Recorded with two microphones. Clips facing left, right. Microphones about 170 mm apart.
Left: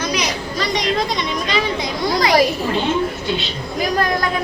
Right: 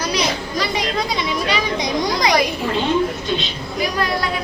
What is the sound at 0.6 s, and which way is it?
A child's voice, 10° right (ahead or behind).